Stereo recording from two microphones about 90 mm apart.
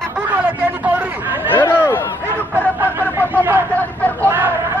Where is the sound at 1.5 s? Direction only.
25° left (ahead or behind).